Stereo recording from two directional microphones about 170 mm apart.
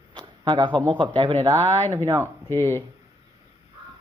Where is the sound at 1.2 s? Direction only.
35° right (ahead or behind); by 2.3 s 15° right (ahead or behind).